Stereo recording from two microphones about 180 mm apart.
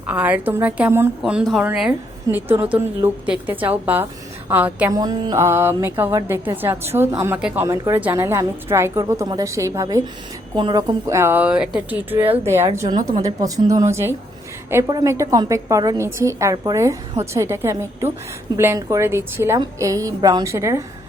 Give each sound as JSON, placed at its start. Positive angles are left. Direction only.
{"t": 0.1, "sound": "a woman's voice", "side_deg": -10}
{"t": 4.9, "sound": "a woman's voice", "side_deg": -20}